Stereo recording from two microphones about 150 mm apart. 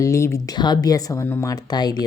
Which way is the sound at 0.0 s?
20° left (ahead or behind).